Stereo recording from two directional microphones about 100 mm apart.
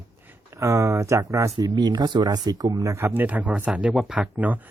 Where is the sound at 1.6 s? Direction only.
45° right (ahead or behind).